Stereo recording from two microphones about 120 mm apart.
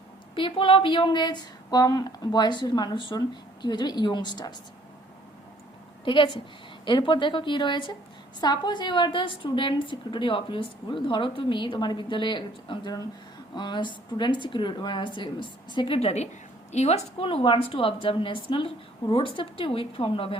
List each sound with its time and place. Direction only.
0.3 s a woman's voice: 45° left (ahead or behind)
6.1 s a woman's voice: 45° left (ahead or behind)
16.0 s a woman's voice: 60° left (ahead or behind)
17.2 s a woman's voice: 45° left (ahead or behind)